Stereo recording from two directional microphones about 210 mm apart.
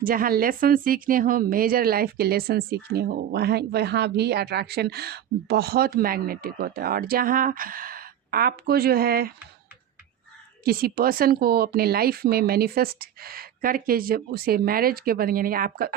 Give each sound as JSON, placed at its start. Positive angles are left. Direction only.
{"t": 0.0, "sound": "speech", "side_deg": -45}
{"t": 10.6, "sound": "speech", "side_deg": -45}